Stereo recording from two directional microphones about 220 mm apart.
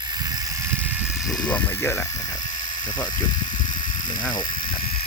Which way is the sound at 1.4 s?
5° left (ahead or behind).